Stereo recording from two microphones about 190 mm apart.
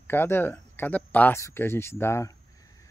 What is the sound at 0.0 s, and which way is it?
Speech, 10° left (ahead or behind).